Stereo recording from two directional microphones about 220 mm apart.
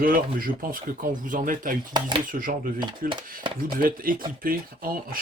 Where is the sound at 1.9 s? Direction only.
20° right (ahead or behind).